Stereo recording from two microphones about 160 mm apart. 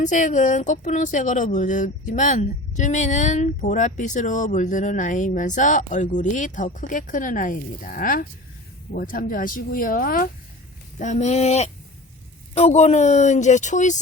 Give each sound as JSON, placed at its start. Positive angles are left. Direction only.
{"t": 0.0, "sound": "speech", "side_deg": 50}
{"t": 10.9, "sound": "speech", "side_deg": 50}